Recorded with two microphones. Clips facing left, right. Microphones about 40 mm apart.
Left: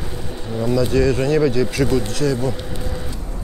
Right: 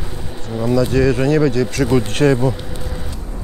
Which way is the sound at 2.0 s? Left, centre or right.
Right.